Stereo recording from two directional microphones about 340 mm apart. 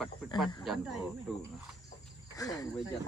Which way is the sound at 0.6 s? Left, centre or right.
Centre.